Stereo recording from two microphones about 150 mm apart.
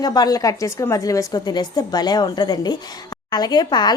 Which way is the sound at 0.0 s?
25° left (ahead or behind).